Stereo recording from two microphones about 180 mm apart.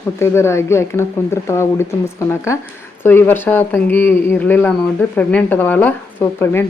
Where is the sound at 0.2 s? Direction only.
15° left (ahead or behind).